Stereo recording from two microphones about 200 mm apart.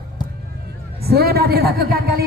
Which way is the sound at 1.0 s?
50° right (ahead or behind).